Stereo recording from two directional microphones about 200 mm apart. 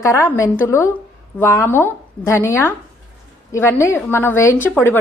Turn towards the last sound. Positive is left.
turn(degrees=10)  # may be behind; listen again after turning